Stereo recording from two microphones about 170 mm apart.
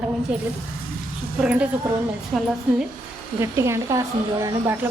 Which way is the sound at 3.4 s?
15° right (ahead or behind).